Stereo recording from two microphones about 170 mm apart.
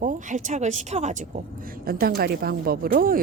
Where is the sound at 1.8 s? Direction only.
65° right (ahead or behind).